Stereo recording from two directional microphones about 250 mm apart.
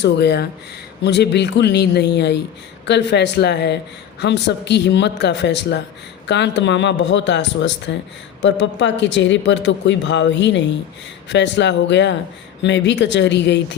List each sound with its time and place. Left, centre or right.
0.0 s a man's voice: left